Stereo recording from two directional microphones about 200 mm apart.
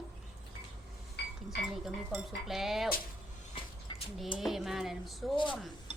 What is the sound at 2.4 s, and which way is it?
Speech, centre (ahead or behind).